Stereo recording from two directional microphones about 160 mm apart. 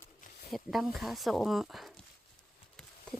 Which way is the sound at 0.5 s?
Centre (ahead or behind).